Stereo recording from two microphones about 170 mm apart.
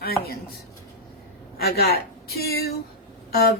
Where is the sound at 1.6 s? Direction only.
70° left (ahead or behind).